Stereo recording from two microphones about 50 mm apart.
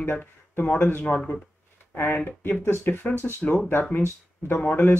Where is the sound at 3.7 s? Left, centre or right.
Left.